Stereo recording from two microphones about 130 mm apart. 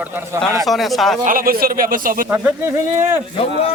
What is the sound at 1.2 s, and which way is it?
A man's voice, 90° right.